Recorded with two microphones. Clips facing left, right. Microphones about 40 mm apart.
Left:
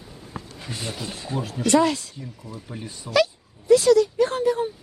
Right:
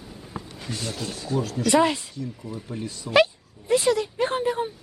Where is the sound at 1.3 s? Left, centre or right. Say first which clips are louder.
Right 1 dB; centre.